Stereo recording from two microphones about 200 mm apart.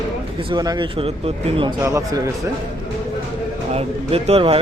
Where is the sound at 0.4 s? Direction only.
20° right (ahead or behind).